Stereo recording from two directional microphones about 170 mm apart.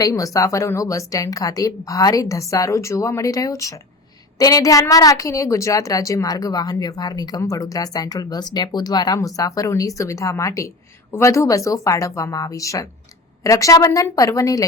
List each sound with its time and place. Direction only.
0.0 s a woman's voice: 20° left (ahead or behind)